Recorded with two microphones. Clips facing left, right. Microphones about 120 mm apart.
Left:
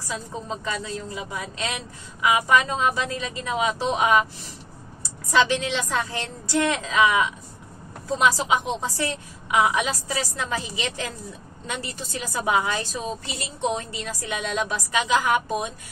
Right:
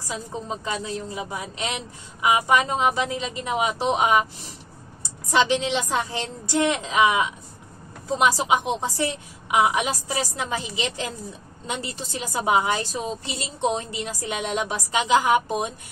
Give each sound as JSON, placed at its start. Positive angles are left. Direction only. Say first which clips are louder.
{"t": 0.7, "sound": "a woman's voice", "louder": "right 1 dB", "side_deg": -25}
{"t": 5.3, "sound": "a woman's voice", "louder": "right 1 dB", "side_deg": -20}